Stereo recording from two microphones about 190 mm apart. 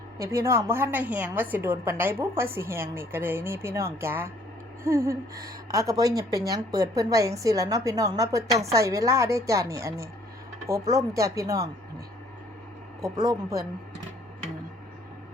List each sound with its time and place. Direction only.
0.2 s a woman's voice: 15° right (ahead or behind)
13.0 s speech: 20° right (ahead or behind)